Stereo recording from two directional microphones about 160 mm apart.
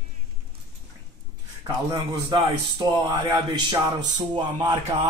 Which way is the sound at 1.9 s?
25° right (ahead or behind).